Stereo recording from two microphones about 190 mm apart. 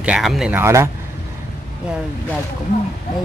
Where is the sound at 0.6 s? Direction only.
15° right (ahead or behind).